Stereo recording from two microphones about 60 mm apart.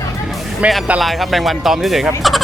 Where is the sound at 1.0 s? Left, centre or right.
Centre.